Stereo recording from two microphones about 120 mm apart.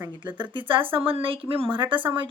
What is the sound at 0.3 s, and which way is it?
Speech, 40° right (ahead or behind).